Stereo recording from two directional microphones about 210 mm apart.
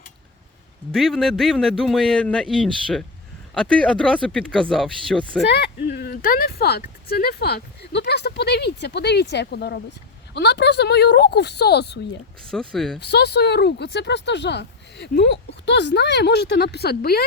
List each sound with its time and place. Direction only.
0.9 s speech: centre (ahead or behind)
5.5 s speech: 50° left (ahead or behind)
12.5 s speech: centre (ahead or behind)
13.0 s speech: 50° left (ahead or behind)